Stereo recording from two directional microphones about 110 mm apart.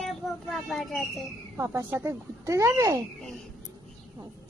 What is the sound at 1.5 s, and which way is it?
Speech, 25° right (ahead or behind).